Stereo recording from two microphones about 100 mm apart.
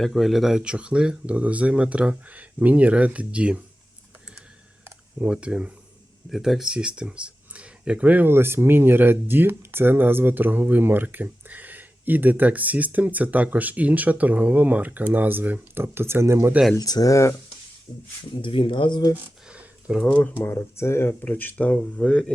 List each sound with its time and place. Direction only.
0.0 s speech: centre (ahead or behind)
5.2 s speech: 10° right (ahead or behind); by 16.5 s 25° right (ahead or behind)
16.7 s speech: 40° left (ahead or behind)
18.4 s speech: 60° left (ahead or behind)
19.1 s a sound: 10° right (ahead or behind)
20.1 s speech: 15° left (ahead or behind)